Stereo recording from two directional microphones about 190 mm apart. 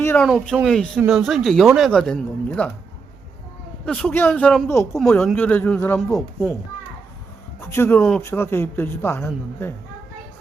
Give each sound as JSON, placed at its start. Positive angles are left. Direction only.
{"t": 0.0, "sound": "a sound", "side_deg": 10}
{"t": 0.3, "sound": "speech", "side_deg": 0}
{"t": 3.8, "sound": "speech", "side_deg": 5}
{"t": 4.7, "sound": "speech", "side_deg": 15}
{"t": 7.7, "sound": "speech", "side_deg": 10}